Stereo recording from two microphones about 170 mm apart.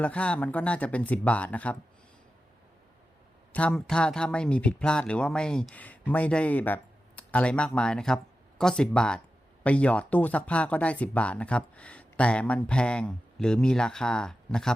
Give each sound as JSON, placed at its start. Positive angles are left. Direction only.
{"t": 0.0, "sound": "speech", "side_deg": 5}
{"t": 3.5, "sound": "speech", "side_deg": 5}